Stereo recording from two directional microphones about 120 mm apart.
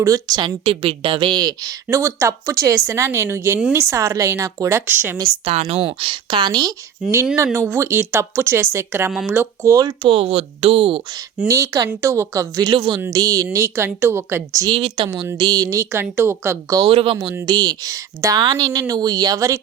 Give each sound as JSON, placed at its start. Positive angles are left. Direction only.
{"t": 0.0, "sound": "a woman's voice", "side_deg": -30}
{"t": 5.5, "sound": "speech", "side_deg": -60}
{"t": 7.3, "sound": "a woman's voice", "side_deg": -25}
{"t": 9.7, "sound": "speech", "side_deg": -35}
{"t": 10.1, "sound": "speech", "side_deg": -55}
{"t": 11.4, "sound": "a woman's voice", "side_deg": -25}
{"t": 12.7, "sound": "speech", "side_deg": -45}
{"t": 13.1, "sound": "a woman's voice", "side_deg": -30}
{"t": 14.6, "sound": "a woman's voice", "side_deg": -45}
{"t": 16.8, "sound": "speech", "side_deg": -50}
{"t": 17.4, "sound": "speech", "side_deg": -35}